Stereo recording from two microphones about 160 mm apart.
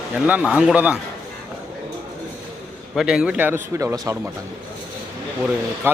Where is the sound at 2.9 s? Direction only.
5° right (ahead or behind).